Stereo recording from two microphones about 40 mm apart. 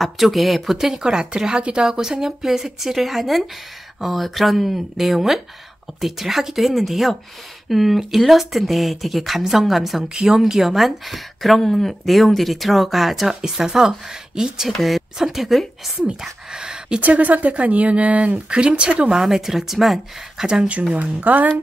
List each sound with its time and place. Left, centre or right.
0.0 s speech: centre
10.0 s speech: centre
14.8 s speech: centre
15.1 s speech: centre
17.0 s speech: right
19.1 s speech: centre
20.9 s speech: right